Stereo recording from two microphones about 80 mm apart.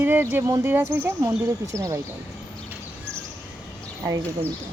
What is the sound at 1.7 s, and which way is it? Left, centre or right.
Speech, right.